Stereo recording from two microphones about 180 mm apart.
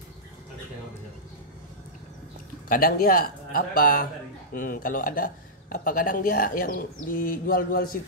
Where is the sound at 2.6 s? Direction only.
55° left (ahead or behind).